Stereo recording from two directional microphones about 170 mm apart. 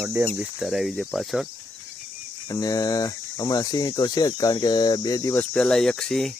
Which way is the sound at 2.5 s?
20° left (ahead or behind).